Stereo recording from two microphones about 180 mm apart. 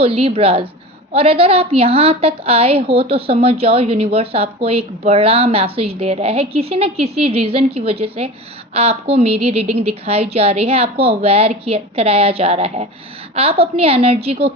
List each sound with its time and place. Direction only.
0.0 s a woman's voice: 30° right (ahead or behind)